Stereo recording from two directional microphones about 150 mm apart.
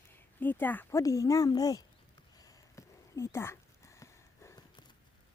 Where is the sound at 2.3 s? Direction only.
25° left (ahead or behind).